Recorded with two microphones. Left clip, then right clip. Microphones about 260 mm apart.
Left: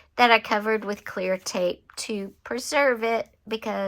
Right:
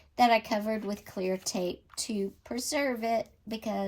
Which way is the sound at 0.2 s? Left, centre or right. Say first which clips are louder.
Left 6 dB; centre.